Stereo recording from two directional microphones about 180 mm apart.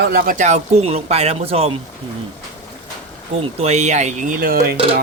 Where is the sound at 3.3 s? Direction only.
35° right (ahead or behind); by 4.7 s 55° right (ahead or behind).